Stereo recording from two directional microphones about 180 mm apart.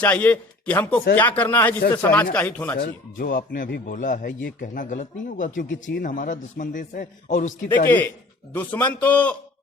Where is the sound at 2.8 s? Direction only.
50° left (ahead or behind).